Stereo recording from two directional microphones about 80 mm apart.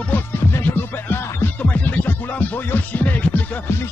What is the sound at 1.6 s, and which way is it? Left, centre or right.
Music, centre.